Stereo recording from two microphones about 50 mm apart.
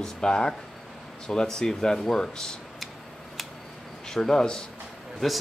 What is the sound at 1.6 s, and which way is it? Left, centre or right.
Speech, centre.